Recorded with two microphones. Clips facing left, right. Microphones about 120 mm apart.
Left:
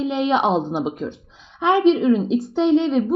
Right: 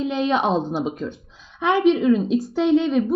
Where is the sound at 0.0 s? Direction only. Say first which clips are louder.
Left 2 dB; 20° left (ahead or behind).